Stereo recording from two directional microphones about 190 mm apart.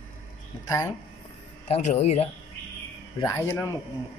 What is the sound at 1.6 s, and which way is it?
Speech, 35° left (ahead or behind).